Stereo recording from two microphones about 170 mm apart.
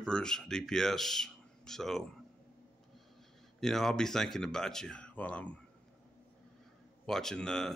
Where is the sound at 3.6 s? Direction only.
Centre (ahead or behind).